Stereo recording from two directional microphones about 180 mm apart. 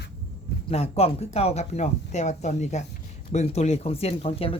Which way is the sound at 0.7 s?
35° left (ahead or behind).